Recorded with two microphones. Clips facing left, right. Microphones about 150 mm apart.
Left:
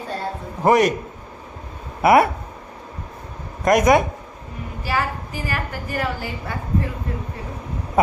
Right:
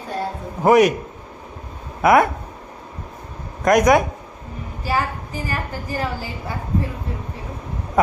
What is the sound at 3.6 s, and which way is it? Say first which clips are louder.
Speech: right 1 dB; centre (ahead or behind).